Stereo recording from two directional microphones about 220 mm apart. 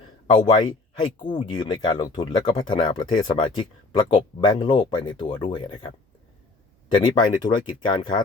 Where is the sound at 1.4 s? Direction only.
20° left (ahead or behind).